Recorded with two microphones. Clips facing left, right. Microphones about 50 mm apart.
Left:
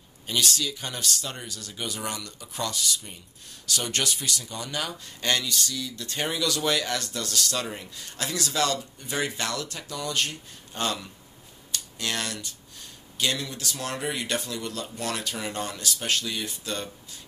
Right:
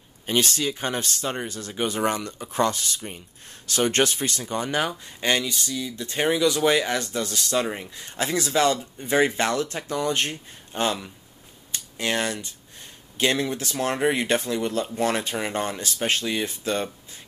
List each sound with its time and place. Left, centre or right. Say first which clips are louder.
0.3 s speech: right 4 dB; right